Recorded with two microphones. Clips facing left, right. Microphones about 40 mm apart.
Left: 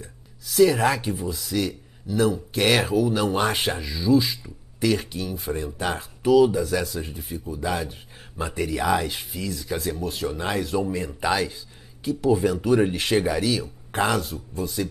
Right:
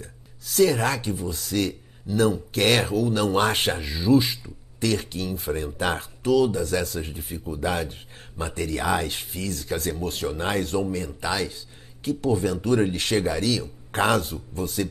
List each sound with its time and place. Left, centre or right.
0.0 s speech: centre
3.8 s speech: centre
4.4 s speech: centre
6.2 s speech: centre
7.0 s speech: centre
7.3 s speech: right
7.6 s speech: centre
8.4 s speech: centre
10.9 s speech: centre
14.8 s speech: centre